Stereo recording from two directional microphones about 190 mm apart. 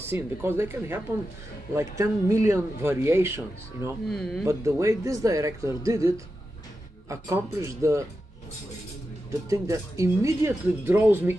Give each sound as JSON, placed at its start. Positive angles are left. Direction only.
{"t": 0.0, "sound": "speech", "side_deg": -10}
{"t": 4.1, "sound": "speech", "side_deg": 0}
{"t": 4.5, "sound": "speech", "side_deg": -15}
{"t": 9.5, "sound": "speech", "side_deg": -15}